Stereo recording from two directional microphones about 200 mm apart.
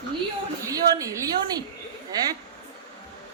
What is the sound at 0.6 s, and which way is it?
A woman's voice, 15° right (ahead or behind).